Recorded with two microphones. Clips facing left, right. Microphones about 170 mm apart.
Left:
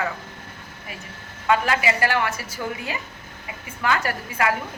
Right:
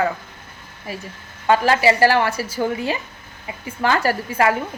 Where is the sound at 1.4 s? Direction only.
35° right (ahead or behind).